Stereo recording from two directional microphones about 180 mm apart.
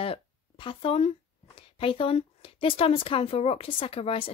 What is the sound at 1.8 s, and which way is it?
Speech, 30° left (ahead or behind).